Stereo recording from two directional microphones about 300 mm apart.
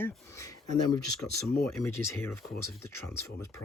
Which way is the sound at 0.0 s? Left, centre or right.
Centre.